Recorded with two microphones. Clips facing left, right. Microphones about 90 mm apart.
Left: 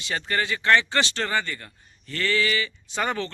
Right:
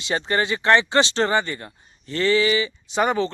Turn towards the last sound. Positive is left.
turn(degrees=-20)  # may be behind; listen again after turning